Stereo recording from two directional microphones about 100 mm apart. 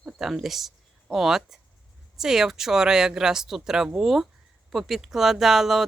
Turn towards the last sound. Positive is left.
turn(degrees=0)  # may be behind; listen again after turning